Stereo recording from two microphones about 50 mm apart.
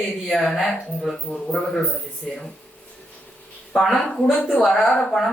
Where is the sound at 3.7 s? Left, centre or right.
Centre.